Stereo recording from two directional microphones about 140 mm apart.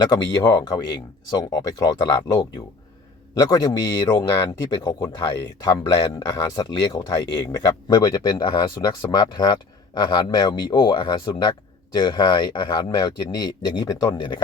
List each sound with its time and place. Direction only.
0.0 s speech: 30° left (ahead or behind)